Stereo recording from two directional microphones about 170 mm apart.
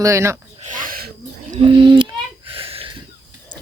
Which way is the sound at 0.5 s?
45° right (ahead or behind).